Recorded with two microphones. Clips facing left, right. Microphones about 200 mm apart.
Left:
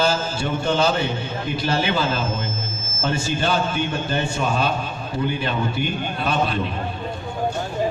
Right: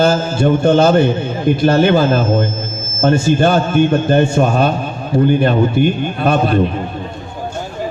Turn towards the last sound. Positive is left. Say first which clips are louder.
# right 8 dB
turn(degrees=-50)  # may be behind; listen again after turning